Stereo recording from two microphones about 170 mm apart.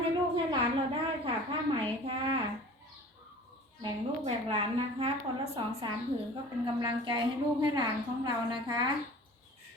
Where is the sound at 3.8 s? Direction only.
30° right (ahead or behind).